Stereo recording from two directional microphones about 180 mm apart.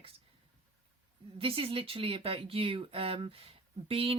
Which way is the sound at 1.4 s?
30° right (ahead or behind).